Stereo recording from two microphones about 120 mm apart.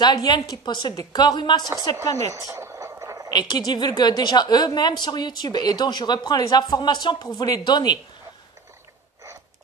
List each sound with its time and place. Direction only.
0.0 s a woman's voice: 35° left (ahead or behind)
2.0 s speech: 25° left (ahead or behind)
2.3 s a sound: 25° right (ahead or behind)
3.3 s a woman's voice: 35° left (ahead or behind)